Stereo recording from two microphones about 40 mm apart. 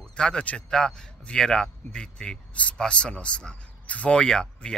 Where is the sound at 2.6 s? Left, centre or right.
Left.